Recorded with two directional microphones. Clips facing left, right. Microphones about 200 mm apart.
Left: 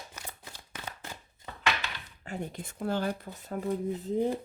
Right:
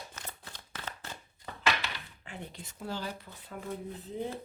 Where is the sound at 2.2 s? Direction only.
45° left (ahead or behind).